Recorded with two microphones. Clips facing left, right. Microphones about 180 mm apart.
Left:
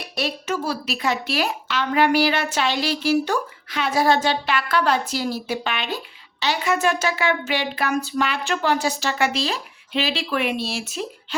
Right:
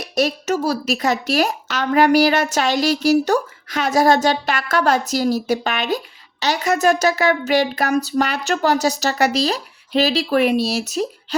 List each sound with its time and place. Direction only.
0.0 s speech: 40° right (ahead or behind)